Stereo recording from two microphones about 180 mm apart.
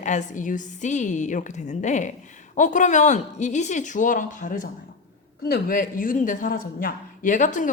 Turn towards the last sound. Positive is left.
turn(degrees=45)  # may be behind; listen again after turning